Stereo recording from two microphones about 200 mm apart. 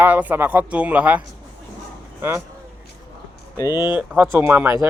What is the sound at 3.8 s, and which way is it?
Speech, 10° right (ahead or behind).